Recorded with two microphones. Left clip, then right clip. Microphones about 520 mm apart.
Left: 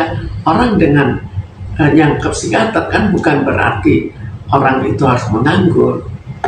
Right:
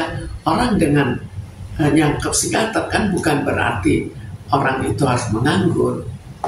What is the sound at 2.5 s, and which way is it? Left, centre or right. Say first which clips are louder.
Speech: left 7 dB; right.